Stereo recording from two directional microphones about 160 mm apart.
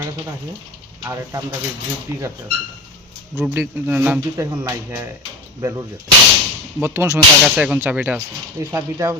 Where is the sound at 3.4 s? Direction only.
10° right (ahead or behind).